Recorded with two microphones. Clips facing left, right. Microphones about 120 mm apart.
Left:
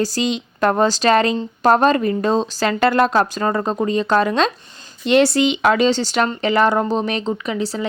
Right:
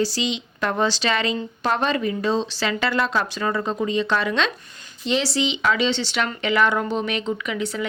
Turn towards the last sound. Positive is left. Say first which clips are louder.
# left 3 dB
turn(degrees=35)  # may be behind; listen again after turning